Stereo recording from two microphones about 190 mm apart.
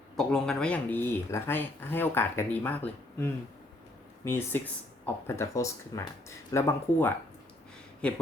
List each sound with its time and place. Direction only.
0.2 s speech: 5° left (ahead or behind)